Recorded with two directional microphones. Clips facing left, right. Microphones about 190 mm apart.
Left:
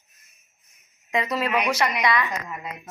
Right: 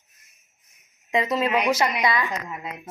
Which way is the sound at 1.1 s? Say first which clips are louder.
Right 2 dB; 20° right (ahead or behind).